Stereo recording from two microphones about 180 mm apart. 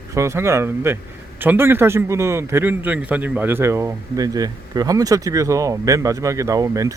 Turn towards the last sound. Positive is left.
turn(degrees=-20)  # may be behind; listen again after turning